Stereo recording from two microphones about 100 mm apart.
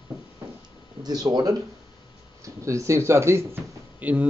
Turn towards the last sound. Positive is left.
turn(degrees=-20)  # may be behind; listen again after turning